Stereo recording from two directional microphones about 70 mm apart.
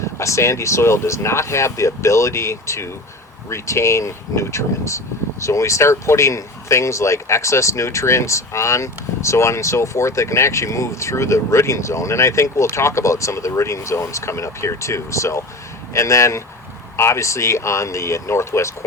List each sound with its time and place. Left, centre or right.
0.0 s speech: left